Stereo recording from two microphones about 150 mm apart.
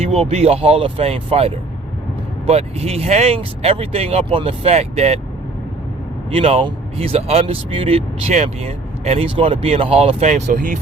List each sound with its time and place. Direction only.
0.0 s speech: 40° right (ahead or behind)
6.3 s speech: 40° right (ahead or behind)